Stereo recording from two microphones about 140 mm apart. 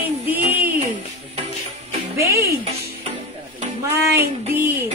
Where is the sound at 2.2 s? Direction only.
20° right (ahead or behind).